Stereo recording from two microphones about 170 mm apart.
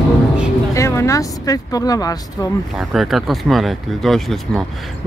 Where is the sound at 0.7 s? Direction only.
15° left (ahead or behind).